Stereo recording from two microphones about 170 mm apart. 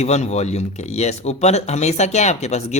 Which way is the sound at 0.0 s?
40° left (ahead or behind).